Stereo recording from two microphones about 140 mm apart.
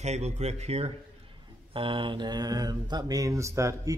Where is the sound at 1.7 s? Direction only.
35° right (ahead or behind); by 3.9 s 20° right (ahead or behind).